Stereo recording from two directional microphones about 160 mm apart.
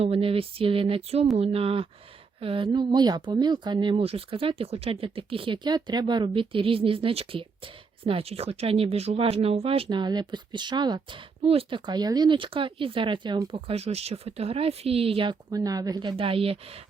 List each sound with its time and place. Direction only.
0.0 s speech: 35° right (ahead or behind)